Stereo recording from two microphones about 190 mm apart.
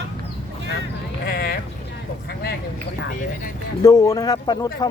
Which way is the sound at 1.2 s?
55° left (ahead or behind).